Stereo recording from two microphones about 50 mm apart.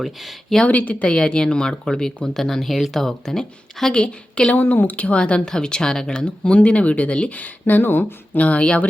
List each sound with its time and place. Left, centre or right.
0.0 s speech: centre
0.7 s speech: left
1.0 s speech: centre
4.0 s speech: left
4.5 s speech: left
4.9 s speech: left
7.8 s speech: left
8.4 s speech: left